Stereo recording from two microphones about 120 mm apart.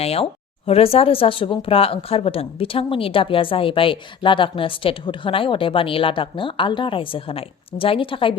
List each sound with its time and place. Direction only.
0.0 s a woman's voice: 55° left (ahead or behind)